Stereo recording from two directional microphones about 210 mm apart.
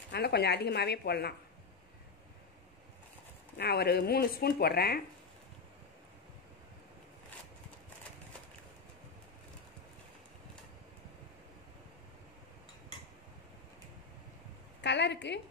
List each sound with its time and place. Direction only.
0.1 s speech: 50° left (ahead or behind)
3.5 s speech: 50° left (ahead or behind)
14.8 s a woman's voice: 55° left (ahead or behind)